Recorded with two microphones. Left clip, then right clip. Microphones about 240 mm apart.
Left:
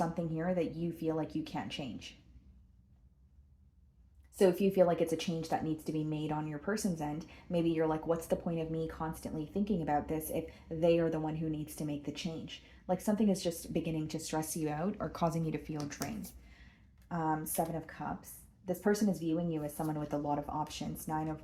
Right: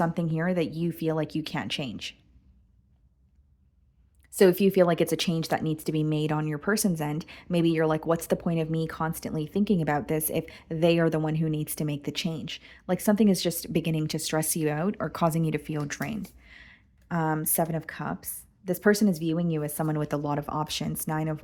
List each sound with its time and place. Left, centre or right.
0.0 s speech: right
4.4 s speech: right